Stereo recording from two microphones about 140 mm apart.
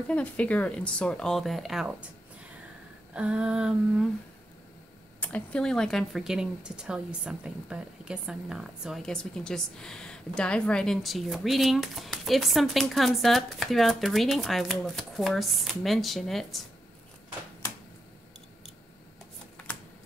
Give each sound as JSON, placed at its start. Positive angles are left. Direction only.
{"t": 0.1, "sound": "speech", "side_deg": 10}
{"t": 3.1, "sound": "a sound", "side_deg": -10}
{"t": 5.2, "sound": "speech", "side_deg": 10}
{"t": 19.5, "sound": "shuffling cards", "side_deg": 10}